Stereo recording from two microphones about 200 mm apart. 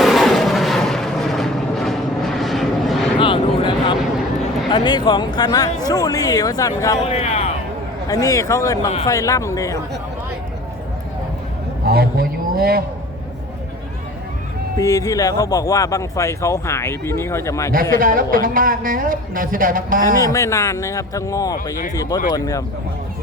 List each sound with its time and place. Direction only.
0.0 s vehicle: centre (ahead or behind)
3.2 s a sound: 25° left (ahead or behind)
4.7 s speech: 25° left (ahead or behind)
7.1 s a man's voice: 30° left (ahead or behind)
8.0 s speech: 20° left (ahead or behind)
11.9 s a sound: 50° right (ahead or behind)
14.8 s speech: 15° left (ahead or behind)
18.0 s speech: 45° right (ahead or behind)
20.2 s speech: 15° left (ahead or behind)